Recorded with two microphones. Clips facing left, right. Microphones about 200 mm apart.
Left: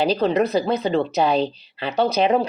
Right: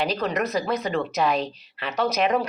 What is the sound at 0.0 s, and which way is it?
Speech, 30° left (ahead or behind).